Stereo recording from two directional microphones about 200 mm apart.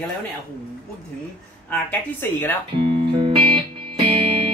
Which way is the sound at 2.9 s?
25° right (ahead or behind).